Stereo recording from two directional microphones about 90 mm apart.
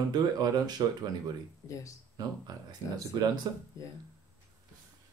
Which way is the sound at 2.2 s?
45° right (ahead or behind).